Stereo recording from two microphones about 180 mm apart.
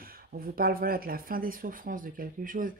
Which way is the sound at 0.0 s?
55° right (ahead or behind).